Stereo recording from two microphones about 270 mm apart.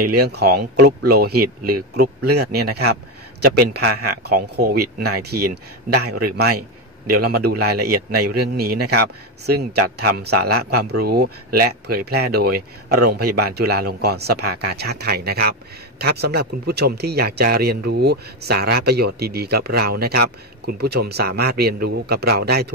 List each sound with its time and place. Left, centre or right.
0.2 s a man's voice: right